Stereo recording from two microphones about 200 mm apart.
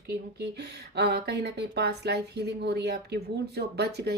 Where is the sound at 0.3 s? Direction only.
55° right (ahead or behind).